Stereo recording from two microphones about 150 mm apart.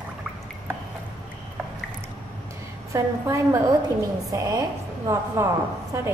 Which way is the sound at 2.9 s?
20° right (ahead or behind).